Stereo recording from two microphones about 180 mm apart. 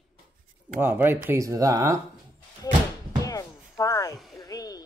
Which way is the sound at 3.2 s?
20° left (ahead or behind).